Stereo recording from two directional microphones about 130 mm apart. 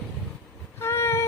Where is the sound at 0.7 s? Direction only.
20° left (ahead or behind).